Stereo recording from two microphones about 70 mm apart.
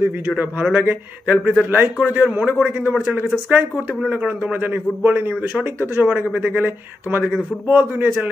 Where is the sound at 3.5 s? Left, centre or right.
Right.